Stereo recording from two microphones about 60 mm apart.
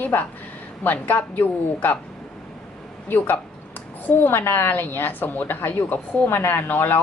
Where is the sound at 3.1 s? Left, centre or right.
Left.